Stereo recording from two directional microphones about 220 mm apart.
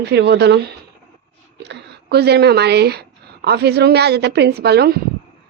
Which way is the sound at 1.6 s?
50° right (ahead or behind).